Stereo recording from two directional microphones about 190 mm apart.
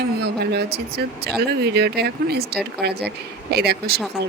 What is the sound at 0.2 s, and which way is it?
Speech, 60° right (ahead or behind).